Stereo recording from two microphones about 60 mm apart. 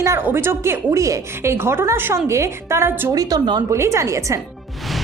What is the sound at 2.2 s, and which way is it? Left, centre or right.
Speech, right.